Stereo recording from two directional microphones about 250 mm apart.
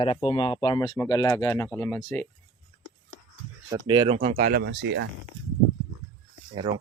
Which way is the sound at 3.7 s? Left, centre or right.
Centre.